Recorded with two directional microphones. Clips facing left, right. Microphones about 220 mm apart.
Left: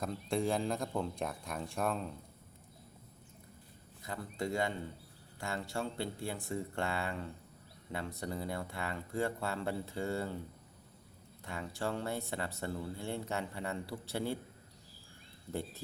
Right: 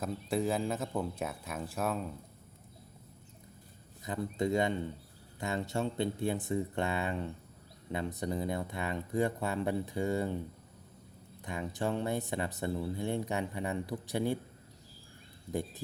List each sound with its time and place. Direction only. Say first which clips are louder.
0.0 s speech: right 2 dB; 5° right (ahead or behind)
4.0 s speech: right 6 dB; 20° right (ahead or behind)
11.4 s speech: right 4 dB; 15° right (ahead or behind)